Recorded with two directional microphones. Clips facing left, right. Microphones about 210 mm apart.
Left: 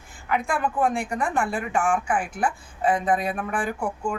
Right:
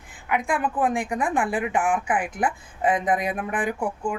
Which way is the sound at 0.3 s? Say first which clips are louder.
Even; 15° right (ahead or behind).